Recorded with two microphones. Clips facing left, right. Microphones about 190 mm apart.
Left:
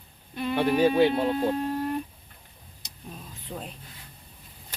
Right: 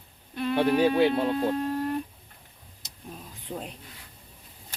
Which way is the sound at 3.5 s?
5° right (ahead or behind).